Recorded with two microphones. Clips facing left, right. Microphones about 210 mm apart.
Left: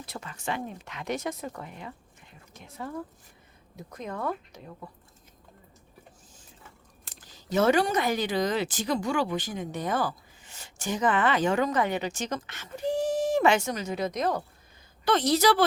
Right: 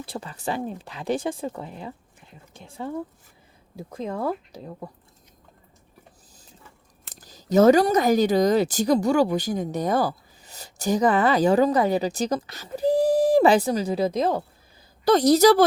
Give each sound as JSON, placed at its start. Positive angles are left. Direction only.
{"t": 0.0, "sound": "speech", "side_deg": -30}
{"t": 7.1, "sound": "speech", "side_deg": -40}
{"t": 15.0, "sound": "speech", "side_deg": -40}